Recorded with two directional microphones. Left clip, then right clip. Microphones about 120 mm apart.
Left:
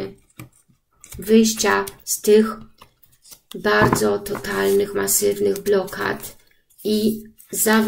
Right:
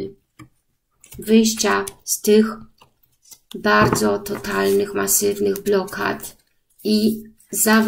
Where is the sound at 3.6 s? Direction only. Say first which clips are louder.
Right 1 dB; 40° right (ahead or behind).